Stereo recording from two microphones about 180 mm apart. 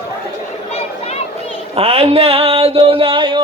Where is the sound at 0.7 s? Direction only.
35° left (ahead or behind).